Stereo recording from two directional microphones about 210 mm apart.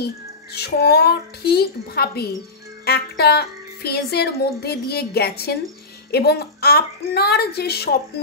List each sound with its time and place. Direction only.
0.0 s speech: 50° left (ahead or behind)